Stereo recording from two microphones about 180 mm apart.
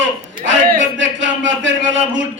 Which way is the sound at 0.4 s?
90° right.